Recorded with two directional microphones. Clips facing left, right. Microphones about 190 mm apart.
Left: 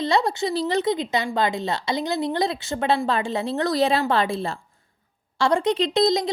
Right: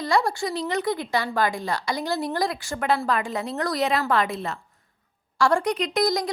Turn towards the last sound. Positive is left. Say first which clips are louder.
# left 3 dB
turn(degrees=25)  # may be behind; listen again after turning